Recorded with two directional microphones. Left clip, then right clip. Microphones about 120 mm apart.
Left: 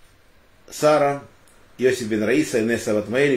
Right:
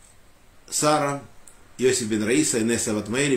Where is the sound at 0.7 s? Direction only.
25° right (ahead or behind).